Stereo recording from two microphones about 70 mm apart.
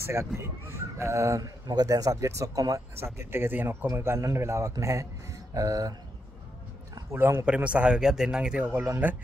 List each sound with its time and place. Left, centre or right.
0.0 s speech: right
1.7 s speech: right
3.2 s a man's voice: right
7.1 s speech: right
7.4 s speech: centre